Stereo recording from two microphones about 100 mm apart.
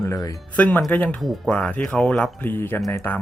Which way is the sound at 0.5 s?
15° left (ahead or behind).